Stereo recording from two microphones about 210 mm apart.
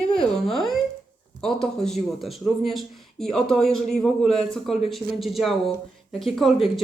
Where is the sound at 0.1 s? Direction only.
5° left (ahead or behind).